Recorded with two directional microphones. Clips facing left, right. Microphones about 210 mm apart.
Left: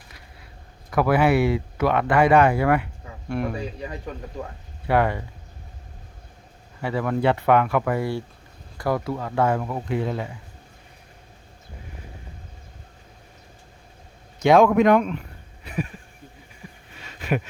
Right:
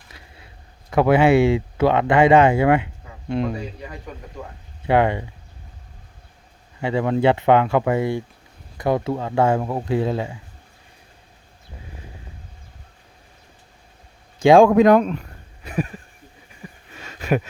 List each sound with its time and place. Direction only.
0.9 s speech: 25° right (ahead or behind)
4.9 s speech: 20° right (ahead or behind)
6.8 s speech: 25° right (ahead or behind)
14.3 s speech: 30° right (ahead or behind)
15.6 s a sound: 45° right (ahead or behind)
17.0 s a sound: 45° right (ahead or behind)